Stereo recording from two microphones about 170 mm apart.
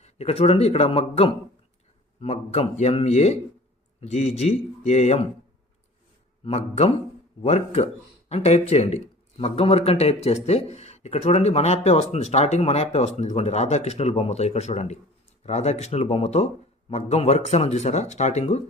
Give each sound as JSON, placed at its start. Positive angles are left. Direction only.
{"t": 0.0, "sound": "speech", "side_deg": 40}
{"t": 6.4, "sound": "speech", "side_deg": 40}